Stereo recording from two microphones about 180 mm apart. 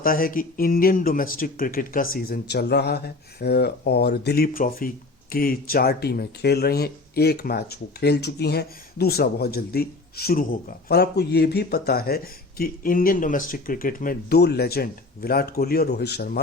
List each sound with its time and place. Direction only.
0.0 s speech: 50° left (ahead or behind)